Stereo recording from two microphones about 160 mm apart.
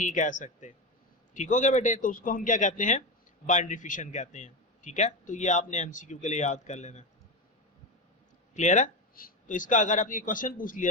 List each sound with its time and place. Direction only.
0.0 s a man's voice: 50° left (ahead or behind)
8.5 s speech: 50° left (ahead or behind)